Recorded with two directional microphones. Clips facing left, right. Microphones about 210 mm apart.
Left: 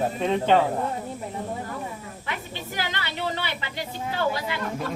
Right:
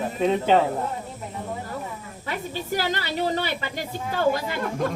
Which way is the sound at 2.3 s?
40° right (ahead or behind).